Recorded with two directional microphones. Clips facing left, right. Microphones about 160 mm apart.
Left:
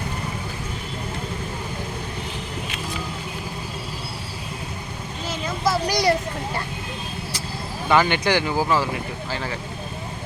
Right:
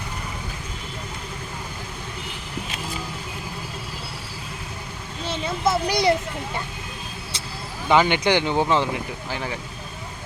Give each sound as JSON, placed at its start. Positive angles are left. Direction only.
{"t": 5.2, "sound": "vehicle", "side_deg": -30}
{"t": 7.9, "sound": "speech", "side_deg": -15}